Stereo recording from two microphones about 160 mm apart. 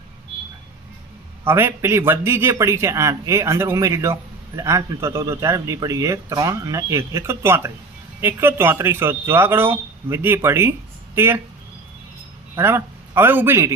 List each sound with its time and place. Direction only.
1.5 s speech: 15° right (ahead or behind)
12.5 s a man's voice: 15° right (ahead or behind)